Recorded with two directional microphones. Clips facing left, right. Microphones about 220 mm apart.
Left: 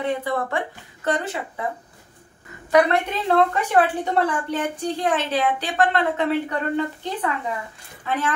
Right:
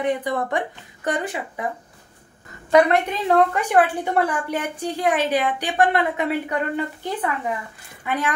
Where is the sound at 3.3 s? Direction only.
15° right (ahead or behind).